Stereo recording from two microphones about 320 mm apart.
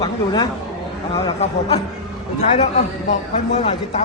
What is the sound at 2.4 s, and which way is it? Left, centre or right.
Speech, left.